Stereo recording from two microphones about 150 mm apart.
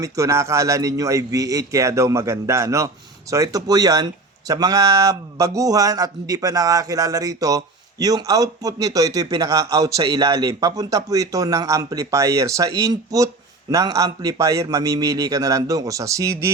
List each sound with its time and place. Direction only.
0.0 s a man's voice: 20° right (ahead or behind)